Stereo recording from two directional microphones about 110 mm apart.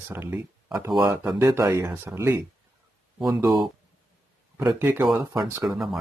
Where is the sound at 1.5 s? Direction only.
25° right (ahead or behind).